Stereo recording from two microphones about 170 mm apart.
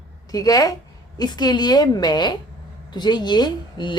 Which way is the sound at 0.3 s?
20° left (ahead or behind).